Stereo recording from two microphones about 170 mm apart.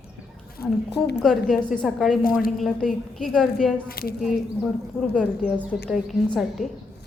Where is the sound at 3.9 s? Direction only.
60° left (ahead or behind).